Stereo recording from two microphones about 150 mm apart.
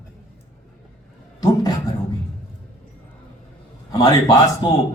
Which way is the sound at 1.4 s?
25° left (ahead or behind).